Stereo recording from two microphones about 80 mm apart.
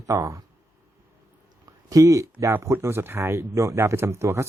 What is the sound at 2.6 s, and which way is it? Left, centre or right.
Speech, right.